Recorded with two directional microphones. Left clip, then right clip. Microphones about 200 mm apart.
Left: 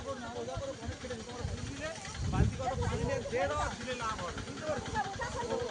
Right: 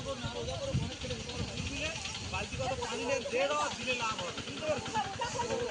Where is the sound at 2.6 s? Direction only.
25° left (ahead or behind).